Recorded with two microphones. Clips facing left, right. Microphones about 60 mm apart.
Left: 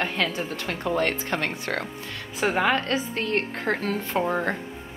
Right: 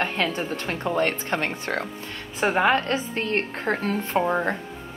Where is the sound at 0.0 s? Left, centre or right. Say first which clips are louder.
Right 1 dB; right.